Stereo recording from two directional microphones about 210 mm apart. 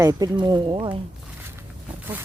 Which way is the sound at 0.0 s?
15° right (ahead or behind).